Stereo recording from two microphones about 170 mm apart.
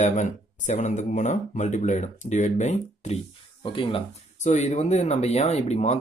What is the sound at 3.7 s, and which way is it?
Speech, 35° left (ahead or behind).